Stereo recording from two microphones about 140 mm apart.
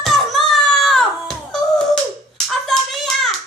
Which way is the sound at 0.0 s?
Centre (ahead or behind).